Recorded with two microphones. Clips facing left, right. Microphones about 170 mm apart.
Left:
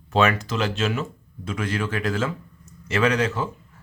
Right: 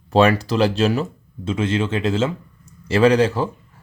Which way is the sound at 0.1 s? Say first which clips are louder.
Right 5 dB; 35° right (ahead or behind).